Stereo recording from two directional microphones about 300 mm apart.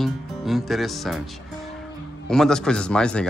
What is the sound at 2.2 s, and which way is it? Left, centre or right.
Speech, centre.